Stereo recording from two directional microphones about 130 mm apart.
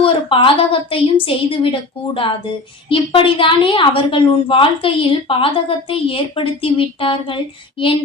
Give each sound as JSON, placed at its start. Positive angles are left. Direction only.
{"t": 0.0, "sound": "a woman's voice", "side_deg": 45}